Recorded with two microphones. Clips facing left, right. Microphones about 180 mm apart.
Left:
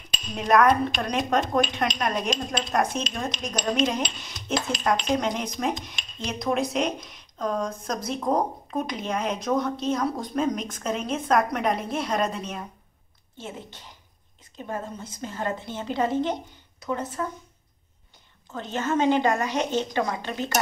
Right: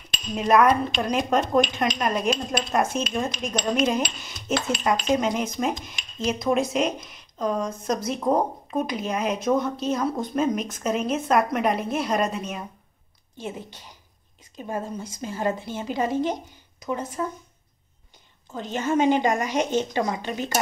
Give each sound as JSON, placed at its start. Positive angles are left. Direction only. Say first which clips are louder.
{"t": 0.3, "sound": "speech", "louder": "right 1 dB", "side_deg": -5}
{"t": 4.2, "sound": "dishes", "louder": "right 3 dB", "side_deg": -5}
{"t": 5.1, "sound": "speech", "louder": "right 3 dB", "side_deg": -5}
{"t": 13.4, "sound": "a woman's voice", "louder": "right 4 dB", "side_deg": -15}
{"t": 18.5, "sound": "a woman's voice", "louder": "right 2 dB", "side_deg": -15}